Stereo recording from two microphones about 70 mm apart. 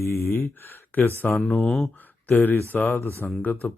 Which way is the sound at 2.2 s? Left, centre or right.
Left.